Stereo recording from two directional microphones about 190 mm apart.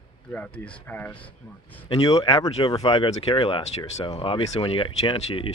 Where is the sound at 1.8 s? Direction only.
25° left (ahead or behind).